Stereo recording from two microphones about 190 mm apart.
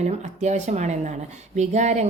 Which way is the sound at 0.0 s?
35° right (ahead or behind).